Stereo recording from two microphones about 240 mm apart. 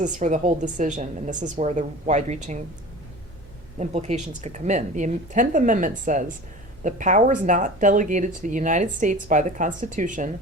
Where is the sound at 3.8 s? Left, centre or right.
Right.